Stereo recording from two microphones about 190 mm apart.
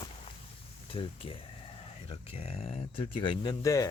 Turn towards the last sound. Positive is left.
turn(degrees=20)  # may be behind; listen again after turning